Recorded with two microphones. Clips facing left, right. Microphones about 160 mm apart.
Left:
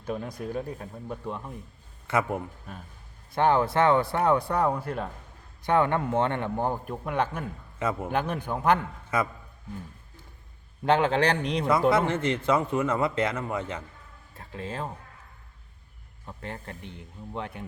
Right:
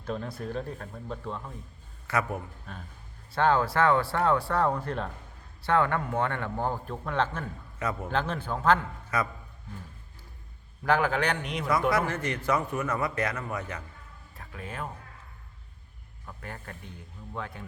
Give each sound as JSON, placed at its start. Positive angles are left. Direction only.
{"t": 0.0, "sound": "a man's voice", "side_deg": 15}
{"t": 5.6, "sound": "a man's voice", "side_deg": 20}
{"t": 7.8, "sound": "speech", "side_deg": 25}
{"t": 8.1, "sound": "a man's voice", "side_deg": 15}
{"t": 10.8, "sound": "speech", "side_deg": 25}
{"t": 16.2, "sound": "speech", "side_deg": 25}